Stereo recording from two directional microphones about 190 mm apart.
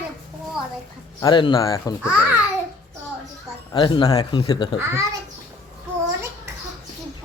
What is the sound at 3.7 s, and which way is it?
Speech, 25° left (ahead or behind).